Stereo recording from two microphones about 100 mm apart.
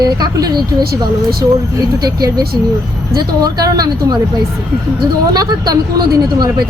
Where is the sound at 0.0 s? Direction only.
40° right (ahead or behind).